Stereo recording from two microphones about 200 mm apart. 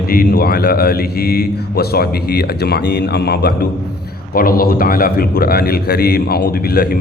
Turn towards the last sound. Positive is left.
turn(degrees=50)  # may be behind; listen again after turning